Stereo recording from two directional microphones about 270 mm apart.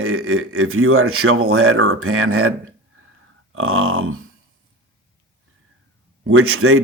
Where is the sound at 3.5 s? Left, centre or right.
Right.